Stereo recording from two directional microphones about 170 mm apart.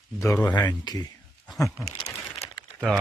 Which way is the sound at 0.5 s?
25° left (ahead or behind).